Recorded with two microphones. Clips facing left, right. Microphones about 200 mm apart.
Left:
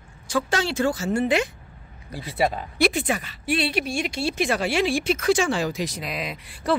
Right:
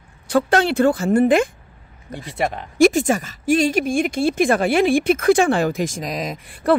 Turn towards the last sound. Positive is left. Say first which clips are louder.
# right 6 dB
turn(degrees=-55)  # may be behind; listen again after turning